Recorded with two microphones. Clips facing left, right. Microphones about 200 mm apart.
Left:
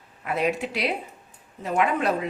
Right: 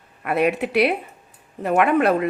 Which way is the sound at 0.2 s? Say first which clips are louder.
Right 5 dB; 60° right (ahead or behind).